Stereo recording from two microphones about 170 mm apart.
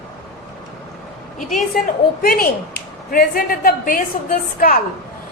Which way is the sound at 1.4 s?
Centre (ahead or behind).